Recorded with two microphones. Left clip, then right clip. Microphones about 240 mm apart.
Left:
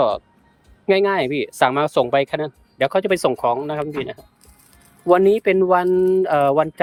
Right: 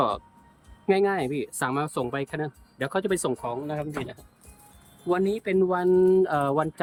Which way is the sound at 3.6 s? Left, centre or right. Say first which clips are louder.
Left 8 dB; centre.